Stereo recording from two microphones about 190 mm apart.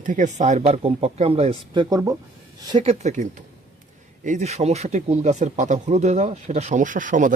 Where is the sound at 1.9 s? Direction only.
20° right (ahead or behind).